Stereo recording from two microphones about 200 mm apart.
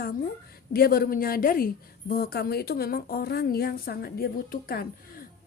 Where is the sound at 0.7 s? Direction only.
50° left (ahead or behind).